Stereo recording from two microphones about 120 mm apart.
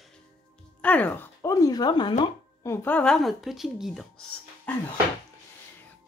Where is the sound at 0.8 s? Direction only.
10° left (ahead or behind); by 2.1 s 35° left (ahead or behind).